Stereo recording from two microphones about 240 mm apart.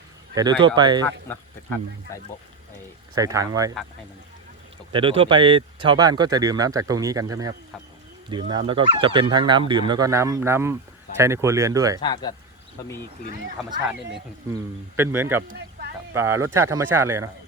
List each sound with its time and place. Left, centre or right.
0.3 s speech: centre
2.1 s speech: centre
3.2 s speech: centre
4.9 s speech: right
12.0 s speech: centre
14.5 s speech: centre
15.4 s a sound: right
16.1 s speech: centre